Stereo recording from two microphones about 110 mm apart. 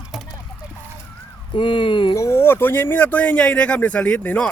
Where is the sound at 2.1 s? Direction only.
25° left (ahead or behind).